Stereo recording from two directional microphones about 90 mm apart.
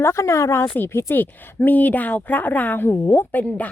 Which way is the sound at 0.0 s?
30° left (ahead or behind).